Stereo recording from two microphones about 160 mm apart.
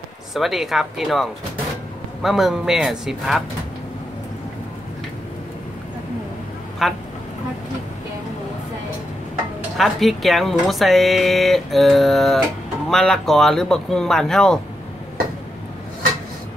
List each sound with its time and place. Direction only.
0.3 s speech: centre (ahead or behind)
6.8 s speech: centre (ahead or behind)
9.8 s speech: centre (ahead or behind)